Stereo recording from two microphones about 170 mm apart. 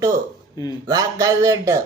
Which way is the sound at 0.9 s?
20° right (ahead or behind).